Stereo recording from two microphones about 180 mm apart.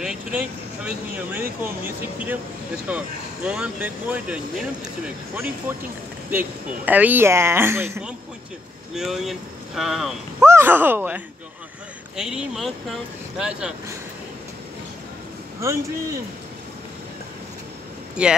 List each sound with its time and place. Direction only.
0.0 s speech: 5° right (ahead or behind)
8.9 s speech: centre (ahead or behind)
10.4 s speech: 15° right (ahead or behind)
15.6 s speech: 15° right (ahead or behind)
18.2 s speech: 5° right (ahead or behind)